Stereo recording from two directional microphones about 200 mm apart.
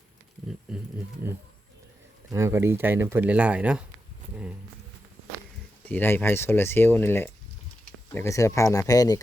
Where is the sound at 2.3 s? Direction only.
15° right (ahead or behind).